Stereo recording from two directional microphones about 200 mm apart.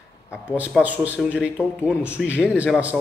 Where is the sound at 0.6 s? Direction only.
10° right (ahead or behind).